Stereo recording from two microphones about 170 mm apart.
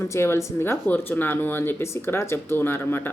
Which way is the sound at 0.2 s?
15° left (ahead or behind).